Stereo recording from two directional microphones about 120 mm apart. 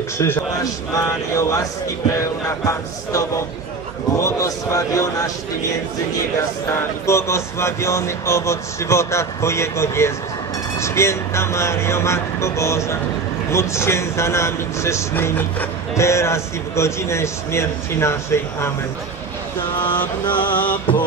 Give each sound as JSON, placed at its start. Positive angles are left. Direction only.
{"t": 0.2, "sound": "speech", "side_deg": 25}
{"t": 6.7, "sound": "speech", "side_deg": 25}
{"t": 19.8, "sound": "a sound", "side_deg": 15}